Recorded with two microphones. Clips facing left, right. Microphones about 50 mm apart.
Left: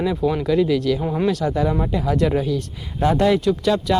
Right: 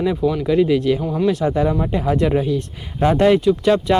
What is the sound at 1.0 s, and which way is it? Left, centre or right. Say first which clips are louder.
Speech: right 1 dB; left.